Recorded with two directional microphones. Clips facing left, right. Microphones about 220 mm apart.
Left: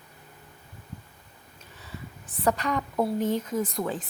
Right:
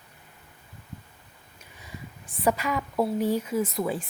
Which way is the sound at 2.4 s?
5° right (ahead or behind).